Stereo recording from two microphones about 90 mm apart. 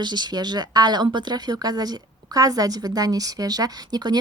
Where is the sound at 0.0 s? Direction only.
55° right (ahead or behind).